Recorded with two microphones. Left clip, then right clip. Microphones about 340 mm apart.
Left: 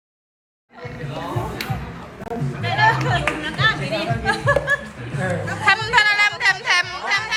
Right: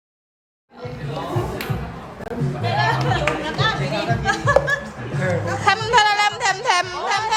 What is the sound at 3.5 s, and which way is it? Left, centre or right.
Music, centre.